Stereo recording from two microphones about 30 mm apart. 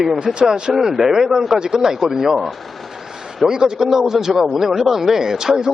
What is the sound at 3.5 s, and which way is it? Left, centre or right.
A man's voice, right.